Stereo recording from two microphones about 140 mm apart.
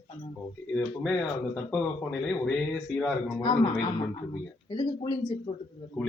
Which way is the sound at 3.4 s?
30° left (ahead or behind).